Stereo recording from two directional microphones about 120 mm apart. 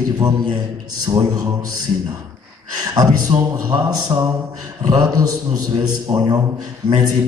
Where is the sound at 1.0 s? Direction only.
35° right (ahead or behind).